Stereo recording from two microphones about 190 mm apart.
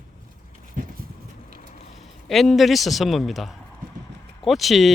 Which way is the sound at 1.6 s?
35° left (ahead or behind).